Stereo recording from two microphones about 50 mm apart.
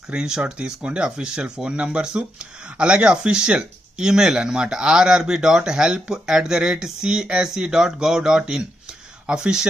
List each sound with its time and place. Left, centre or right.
0.1 s speech: centre